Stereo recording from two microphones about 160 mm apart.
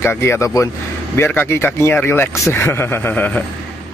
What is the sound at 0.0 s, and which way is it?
Speech, 15° left (ahead or behind).